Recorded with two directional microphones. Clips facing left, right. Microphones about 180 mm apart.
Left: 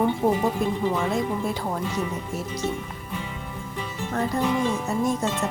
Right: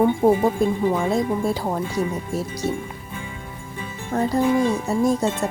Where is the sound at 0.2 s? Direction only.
30° right (ahead or behind).